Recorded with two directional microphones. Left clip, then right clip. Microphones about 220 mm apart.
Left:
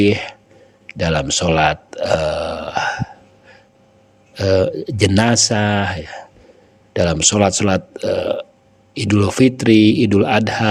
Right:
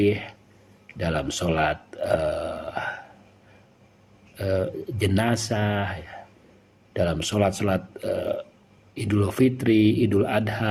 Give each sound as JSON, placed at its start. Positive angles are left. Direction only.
{"t": 0.0, "sound": "speech", "side_deg": 45}
{"t": 0.9, "sound": "grunt", "side_deg": 45}
{"t": 4.4, "sound": "speech", "side_deg": 45}